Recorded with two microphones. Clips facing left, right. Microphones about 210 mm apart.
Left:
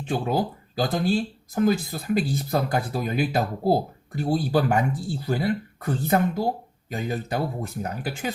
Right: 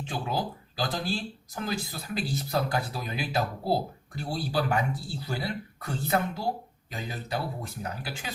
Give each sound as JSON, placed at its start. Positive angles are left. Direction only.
{"t": 0.1, "sound": "speech", "side_deg": 50}